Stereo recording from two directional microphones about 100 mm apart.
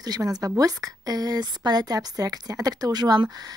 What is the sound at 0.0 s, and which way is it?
Speech, 40° right (ahead or behind).